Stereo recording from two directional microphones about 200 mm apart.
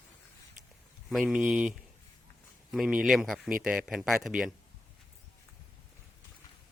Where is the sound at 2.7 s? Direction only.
Centre (ahead or behind).